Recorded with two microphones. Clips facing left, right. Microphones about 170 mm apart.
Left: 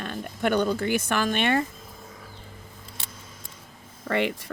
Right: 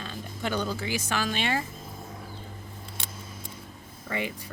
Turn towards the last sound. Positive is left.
turn(degrees=70)  # may be behind; listen again after turning